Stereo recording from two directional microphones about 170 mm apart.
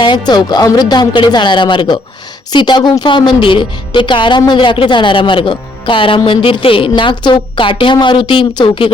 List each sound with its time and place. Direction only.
0.0 s a woman's voice: 25° left (ahead or behind)